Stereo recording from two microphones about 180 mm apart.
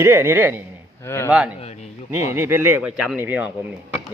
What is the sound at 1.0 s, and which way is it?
Speech, 15° left (ahead or behind).